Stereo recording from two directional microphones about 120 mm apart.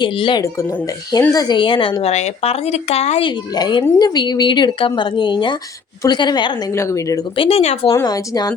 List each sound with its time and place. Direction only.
0.0 s a woman's voice: 40° left (ahead or behind); by 3.2 s 60° left (ahead or behind)
3.2 s a woman's voice: 40° left (ahead or behind)
6.7 s speech: 25° left (ahead or behind)
7.3 s speech: 50° left (ahead or behind)
7.6 s speech: 65° left (ahead or behind)
7.9 s a woman's voice: 30° left (ahead or behind)